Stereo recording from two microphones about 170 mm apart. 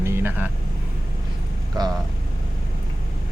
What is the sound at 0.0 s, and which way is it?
Vehicle, 15° right (ahead or behind).